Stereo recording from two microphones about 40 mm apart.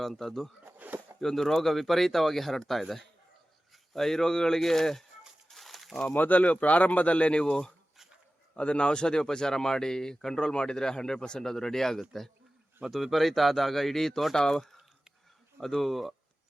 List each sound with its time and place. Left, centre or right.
0.0 s speech: centre
0.8 s a sound: right
1.2 s speech: centre
5.5 s a sound: centre
6.1 s speech: left
8.5 s speech: left; by 12.0 s centre
12.8 s speech: centre
15.6 s speech: centre